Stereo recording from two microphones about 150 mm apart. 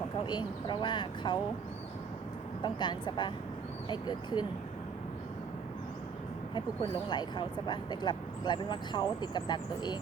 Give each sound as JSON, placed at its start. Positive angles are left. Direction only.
{"t": 0.3, "sound": "speech", "side_deg": 30}
{"t": 2.6, "sound": "speech", "side_deg": 30}
{"t": 6.5, "sound": "speech", "side_deg": 30}